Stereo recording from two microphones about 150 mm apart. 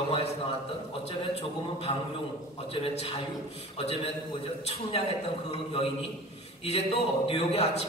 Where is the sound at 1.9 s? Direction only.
45° left (ahead or behind).